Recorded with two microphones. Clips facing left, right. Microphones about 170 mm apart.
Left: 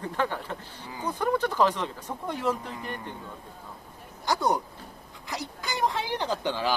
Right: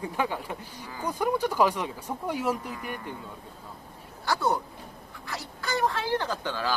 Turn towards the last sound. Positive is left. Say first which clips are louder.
# left 2 dB
turn(degrees=20)  # may be behind; listen again after turning